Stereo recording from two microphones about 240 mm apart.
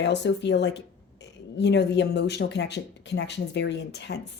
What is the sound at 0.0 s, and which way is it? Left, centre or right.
Speech, left.